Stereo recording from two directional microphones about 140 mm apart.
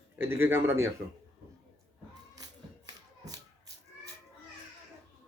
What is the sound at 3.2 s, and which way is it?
Shuffle, 25° right (ahead or behind).